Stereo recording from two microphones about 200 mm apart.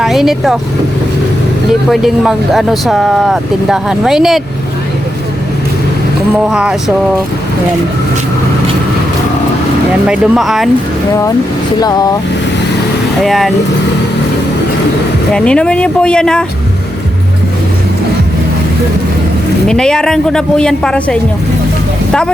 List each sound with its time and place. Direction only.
0.0 s speech: centre (ahead or behind)
1.9 s speech: centre (ahead or behind)
6.5 s speech: 5° right (ahead or behind)
10.1 s speech: centre (ahead or behind)
11.1 s speech: 15° left (ahead or behind)
13.2 s speech: centre (ahead or behind)
15.3 s speech: 5° left (ahead or behind)
19.6 s speech: 5° left (ahead or behind)